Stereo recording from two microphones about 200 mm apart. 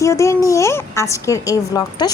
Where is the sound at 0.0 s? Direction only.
15° left (ahead or behind).